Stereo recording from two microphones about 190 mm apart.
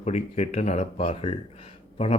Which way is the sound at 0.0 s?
35° left (ahead or behind).